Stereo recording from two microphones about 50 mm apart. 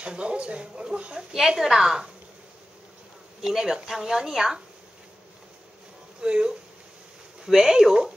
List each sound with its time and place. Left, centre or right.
0.0 s speech: right
1.3 s speech: centre
3.4 s speech: centre
6.2 s speech: centre